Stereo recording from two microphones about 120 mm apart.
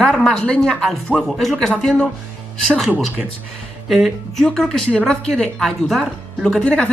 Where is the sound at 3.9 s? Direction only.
Centre (ahead or behind).